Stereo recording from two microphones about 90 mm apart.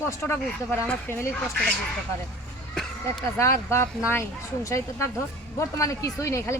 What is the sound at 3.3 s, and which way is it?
A man's voice, 30° left (ahead or behind).